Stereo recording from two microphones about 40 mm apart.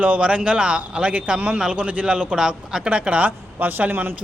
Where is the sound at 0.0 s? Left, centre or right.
Right; by 2.9 s centre.